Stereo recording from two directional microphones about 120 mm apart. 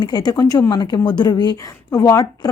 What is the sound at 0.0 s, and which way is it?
A woman's voice, 35° left (ahead or behind).